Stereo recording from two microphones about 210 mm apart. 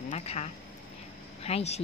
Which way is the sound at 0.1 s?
30° left (ahead or behind).